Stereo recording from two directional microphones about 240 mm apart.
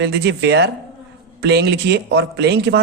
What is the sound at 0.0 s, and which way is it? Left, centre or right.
Speech, right.